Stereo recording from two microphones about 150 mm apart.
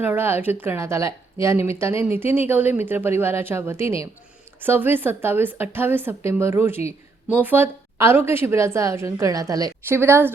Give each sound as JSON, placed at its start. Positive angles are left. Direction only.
{"t": 0.0, "sound": "a woman's voice", "side_deg": -15}